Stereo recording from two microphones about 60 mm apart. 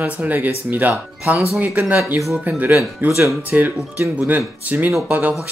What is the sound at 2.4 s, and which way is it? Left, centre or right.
Speech, right.